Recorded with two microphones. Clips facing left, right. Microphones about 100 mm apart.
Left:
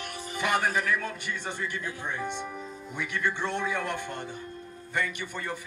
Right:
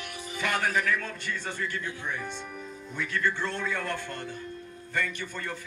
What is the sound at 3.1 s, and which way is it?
Speech, 20° left (ahead or behind).